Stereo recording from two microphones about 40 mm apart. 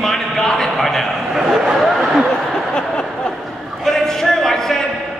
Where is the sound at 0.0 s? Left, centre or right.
Centre.